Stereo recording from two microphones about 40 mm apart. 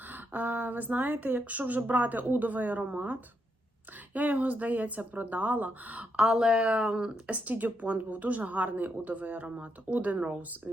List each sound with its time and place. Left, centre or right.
0.1 s speech: right
6.1 s speech: centre
7.3 s speech: right